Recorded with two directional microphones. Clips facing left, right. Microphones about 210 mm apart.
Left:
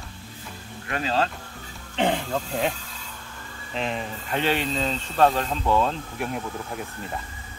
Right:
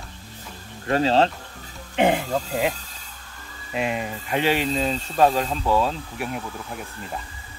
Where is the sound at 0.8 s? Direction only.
30° right (ahead or behind).